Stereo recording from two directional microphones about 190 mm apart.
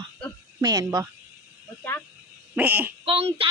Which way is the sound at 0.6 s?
15° right (ahead or behind).